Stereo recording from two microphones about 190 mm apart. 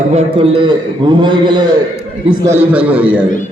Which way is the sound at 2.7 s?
10° right (ahead or behind).